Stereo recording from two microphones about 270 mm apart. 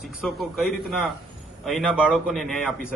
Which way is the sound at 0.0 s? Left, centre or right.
Centre.